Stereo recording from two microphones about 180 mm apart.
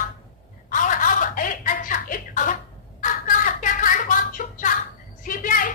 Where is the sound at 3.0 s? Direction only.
45° left (ahead or behind).